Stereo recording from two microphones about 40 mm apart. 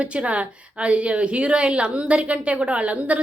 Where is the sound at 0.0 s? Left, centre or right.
Right.